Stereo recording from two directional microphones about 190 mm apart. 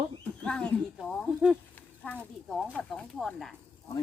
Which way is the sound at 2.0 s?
10° left (ahead or behind).